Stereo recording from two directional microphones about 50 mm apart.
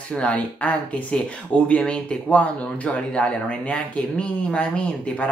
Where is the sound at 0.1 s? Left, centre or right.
Left.